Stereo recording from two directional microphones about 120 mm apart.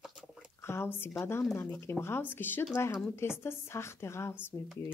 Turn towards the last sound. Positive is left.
turn(degrees=15)  # may be behind; listen again after turning